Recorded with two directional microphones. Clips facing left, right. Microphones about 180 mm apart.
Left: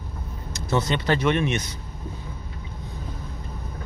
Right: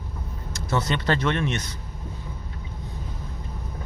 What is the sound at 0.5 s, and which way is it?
Speech, 15° left (ahead or behind).